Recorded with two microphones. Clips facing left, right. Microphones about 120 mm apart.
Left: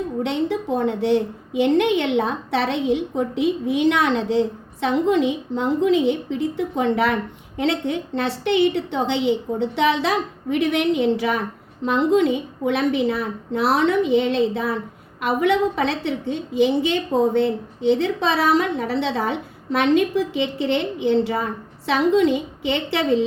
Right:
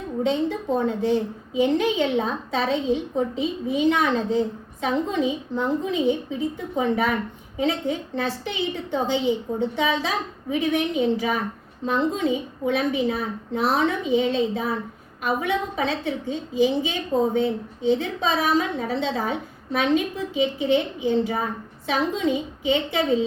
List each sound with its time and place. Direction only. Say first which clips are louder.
0.2 s a woman's voice: right 1 dB; 70° left (ahead or behind)